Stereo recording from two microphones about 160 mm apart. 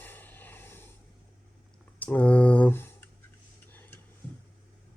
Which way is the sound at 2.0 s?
10° left (ahead or behind).